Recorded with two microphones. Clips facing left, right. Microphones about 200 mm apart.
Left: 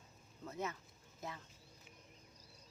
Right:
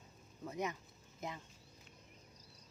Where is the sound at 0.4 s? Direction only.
15° right (ahead or behind).